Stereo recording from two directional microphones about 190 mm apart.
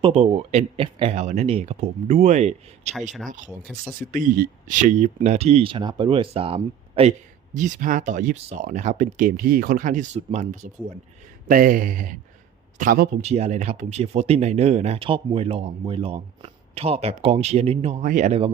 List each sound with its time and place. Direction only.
0.0 s speech: 30° right (ahead or behind)
7.5 s speech: 40° right (ahead or behind)
13.2 s speech: 35° right (ahead or behind)